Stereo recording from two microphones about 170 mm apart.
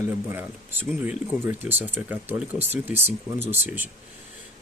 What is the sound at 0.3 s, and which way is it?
Speech, 10° right (ahead or behind).